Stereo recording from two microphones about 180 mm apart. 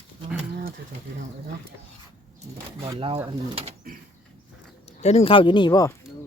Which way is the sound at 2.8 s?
30° right (ahead or behind).